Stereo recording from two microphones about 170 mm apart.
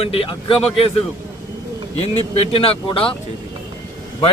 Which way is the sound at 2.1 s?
35° left (ahead or behind).